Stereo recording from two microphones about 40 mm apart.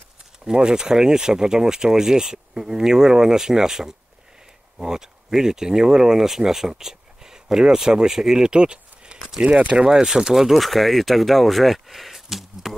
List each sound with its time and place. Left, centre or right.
0.5 s speech: centre
10.3 s speech: centre